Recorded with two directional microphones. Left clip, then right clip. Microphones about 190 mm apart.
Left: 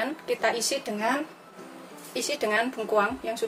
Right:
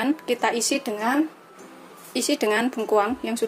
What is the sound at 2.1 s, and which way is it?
Speech, 35° right (ahead or behind).